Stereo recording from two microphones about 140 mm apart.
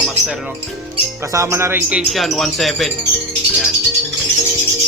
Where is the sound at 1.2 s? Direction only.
20° right (ahead or behind).